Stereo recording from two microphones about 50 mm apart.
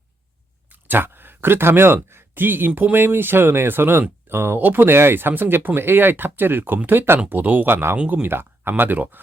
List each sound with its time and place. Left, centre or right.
0.7 s speech: right